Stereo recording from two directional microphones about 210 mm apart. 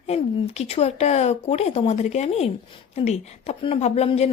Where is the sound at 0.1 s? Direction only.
30° left (ahead or behind).